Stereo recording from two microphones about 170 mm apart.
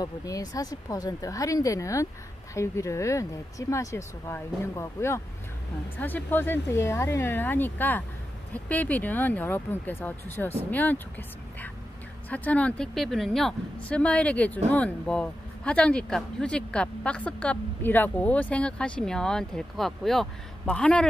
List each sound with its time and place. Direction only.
0.0 s speech: 20° left (ahead or behind)